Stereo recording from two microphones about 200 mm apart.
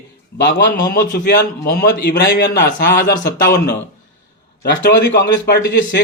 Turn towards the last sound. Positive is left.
turn(degrees=55)  # may be behind; listen again after turning